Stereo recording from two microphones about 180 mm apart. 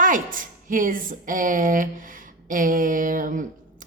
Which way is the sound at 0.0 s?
50° right (ahead or behind).